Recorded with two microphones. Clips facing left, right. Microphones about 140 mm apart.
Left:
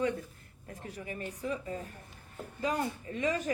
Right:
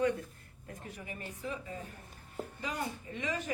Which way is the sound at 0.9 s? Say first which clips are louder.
Left 5 dB; 35° left (ahead or behind).